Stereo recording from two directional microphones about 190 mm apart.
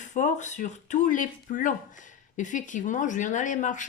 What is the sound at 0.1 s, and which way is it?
Speech, 40° left (ahead or behind).